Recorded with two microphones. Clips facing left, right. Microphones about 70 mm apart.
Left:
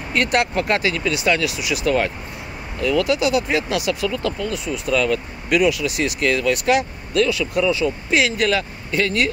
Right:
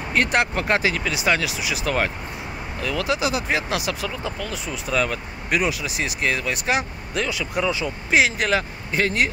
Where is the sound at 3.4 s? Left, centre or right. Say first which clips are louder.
Left 3 dB; right.